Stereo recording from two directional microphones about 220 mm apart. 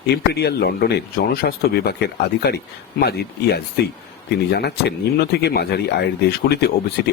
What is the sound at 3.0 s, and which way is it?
Speech, 45° left (ahead or behind).